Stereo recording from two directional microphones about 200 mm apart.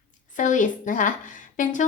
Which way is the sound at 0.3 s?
40° left (ahead or behind).